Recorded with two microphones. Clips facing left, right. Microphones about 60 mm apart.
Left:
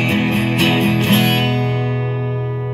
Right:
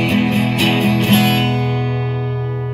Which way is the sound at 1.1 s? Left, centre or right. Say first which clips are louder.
Right 2 dB; left.